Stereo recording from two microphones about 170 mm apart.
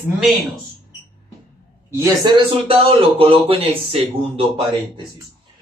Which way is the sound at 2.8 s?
35° right (ahead or behind).